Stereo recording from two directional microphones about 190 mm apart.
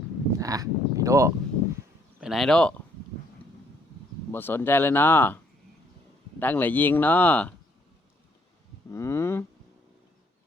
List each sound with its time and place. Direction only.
0.3 s speech: 20° right (ahead or behind)
2.2 s speech: centre (ahead or behind)
4.3 s speech: 10° left (ahead or behind)
6.4 s speech: 10° left (ahead or behind)
8.9 s speech: 15° left (ahead or behind)